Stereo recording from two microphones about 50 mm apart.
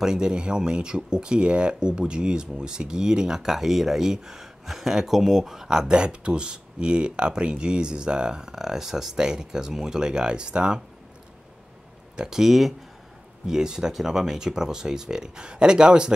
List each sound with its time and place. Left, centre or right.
0.0 s speech: centre
12.2 s speech: centre